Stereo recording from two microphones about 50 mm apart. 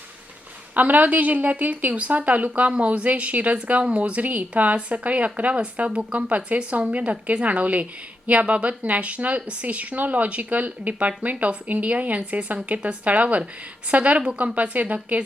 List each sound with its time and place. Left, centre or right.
0.7 s a woman's voice: right